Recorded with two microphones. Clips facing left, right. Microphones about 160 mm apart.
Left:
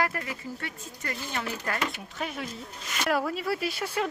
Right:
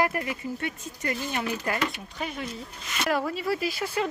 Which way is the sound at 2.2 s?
Centre (ahead or behind).